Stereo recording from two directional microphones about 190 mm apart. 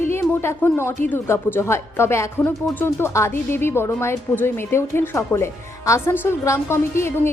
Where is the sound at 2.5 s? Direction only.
Centre (ahead or behind).